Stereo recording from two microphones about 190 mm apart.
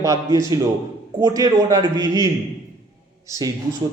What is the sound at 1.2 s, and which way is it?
A man's voice, 20° right (ahead or behind).